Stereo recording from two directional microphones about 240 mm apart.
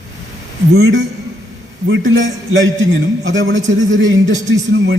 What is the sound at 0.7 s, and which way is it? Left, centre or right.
A woman's voice, right.